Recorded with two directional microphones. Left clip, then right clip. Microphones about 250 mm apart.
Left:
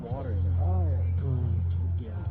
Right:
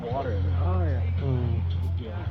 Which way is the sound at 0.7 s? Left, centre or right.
Right.